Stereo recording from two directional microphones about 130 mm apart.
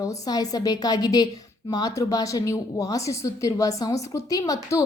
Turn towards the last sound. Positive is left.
turn(degrees=25)  # may be behind; listen again after turning